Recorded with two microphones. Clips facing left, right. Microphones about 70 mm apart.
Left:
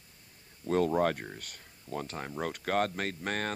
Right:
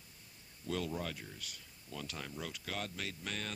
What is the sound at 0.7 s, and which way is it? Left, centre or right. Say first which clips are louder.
Speech: left 12 dB; left.